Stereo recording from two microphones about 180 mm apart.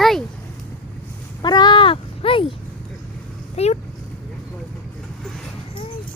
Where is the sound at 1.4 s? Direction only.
25° left (ahead or behind).